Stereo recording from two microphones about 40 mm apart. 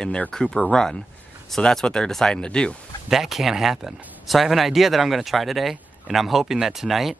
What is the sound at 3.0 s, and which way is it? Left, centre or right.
Speech, centre.